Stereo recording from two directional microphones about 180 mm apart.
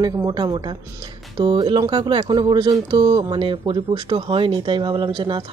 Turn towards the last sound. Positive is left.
turn(degrees=-25)  # may be behind; listen again after turning